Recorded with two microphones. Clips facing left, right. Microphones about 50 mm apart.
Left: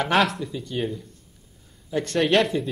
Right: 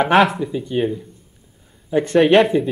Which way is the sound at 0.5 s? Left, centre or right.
Right.